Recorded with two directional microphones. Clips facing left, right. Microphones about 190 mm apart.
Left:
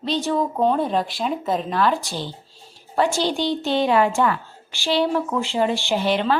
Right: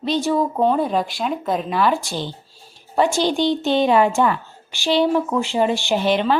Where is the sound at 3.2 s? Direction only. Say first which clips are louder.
Right 3 dB; 20° right (ahead or behind).